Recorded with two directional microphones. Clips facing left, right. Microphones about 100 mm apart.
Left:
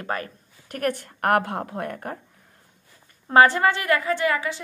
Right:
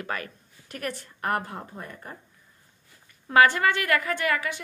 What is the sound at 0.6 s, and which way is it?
A woman's voice, 55° left (ahead or behind).